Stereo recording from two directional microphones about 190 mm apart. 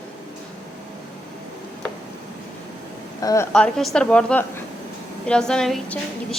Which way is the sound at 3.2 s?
20° left (ahead or behind).